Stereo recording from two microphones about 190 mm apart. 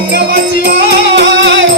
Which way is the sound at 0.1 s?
60° right (ahead or behind).